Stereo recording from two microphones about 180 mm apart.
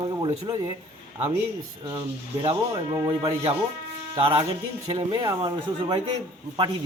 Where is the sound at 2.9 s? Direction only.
25° right (ahead or behind).